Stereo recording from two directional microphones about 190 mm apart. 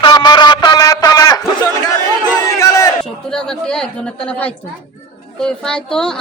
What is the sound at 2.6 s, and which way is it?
Battle cry, 15° left (ahead or behind).